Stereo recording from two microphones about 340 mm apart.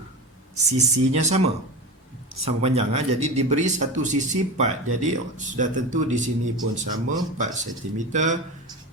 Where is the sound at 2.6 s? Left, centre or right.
Centre.